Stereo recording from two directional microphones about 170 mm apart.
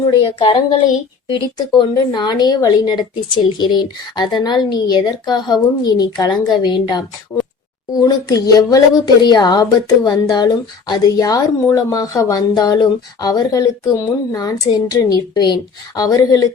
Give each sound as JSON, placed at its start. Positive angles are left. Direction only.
{"t": 0.2, "sound": "speech", "side_deg": 30}